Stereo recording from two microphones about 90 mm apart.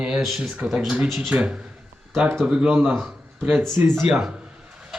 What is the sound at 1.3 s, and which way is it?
Speech, 15° right (ahead or behind).